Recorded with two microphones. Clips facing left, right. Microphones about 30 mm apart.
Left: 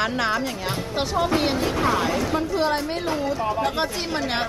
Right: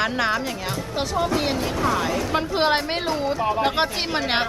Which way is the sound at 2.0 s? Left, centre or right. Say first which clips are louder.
Left 1 dB; centre.